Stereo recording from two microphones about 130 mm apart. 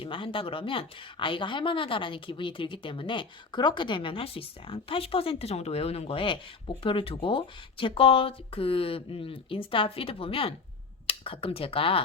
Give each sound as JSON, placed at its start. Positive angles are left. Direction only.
{"t": 0.0, "sound": "a woman's voice", "side_deg": 40}